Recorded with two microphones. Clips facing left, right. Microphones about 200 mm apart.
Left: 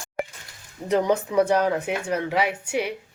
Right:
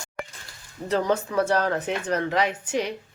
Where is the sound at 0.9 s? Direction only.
15° left (ahead or behind).